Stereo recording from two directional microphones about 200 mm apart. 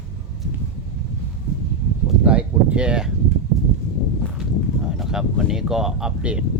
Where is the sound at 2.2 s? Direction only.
5° right (ahead or behind).